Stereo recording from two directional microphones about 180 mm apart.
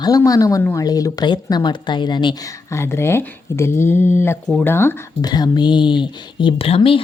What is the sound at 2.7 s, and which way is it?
Speech, 15° left (ahead or behind).